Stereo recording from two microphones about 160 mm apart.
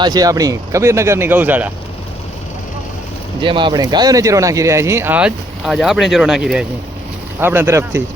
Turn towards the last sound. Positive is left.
turn(degrees=-15)  # may be behind; listen again after turning